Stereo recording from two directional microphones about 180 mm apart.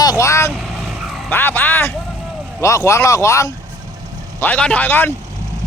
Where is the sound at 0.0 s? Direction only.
20° left (ahead or behind).